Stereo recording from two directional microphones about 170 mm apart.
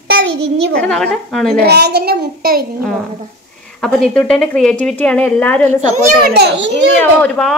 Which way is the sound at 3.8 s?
5° left (ahead or behind).